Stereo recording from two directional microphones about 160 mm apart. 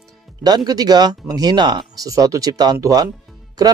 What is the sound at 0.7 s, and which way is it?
Speech, 25° right (ahead or behind).